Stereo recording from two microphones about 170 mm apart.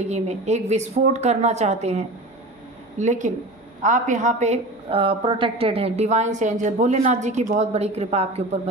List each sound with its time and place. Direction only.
0.0 s a woman's voice: 40° right (ahead or behind)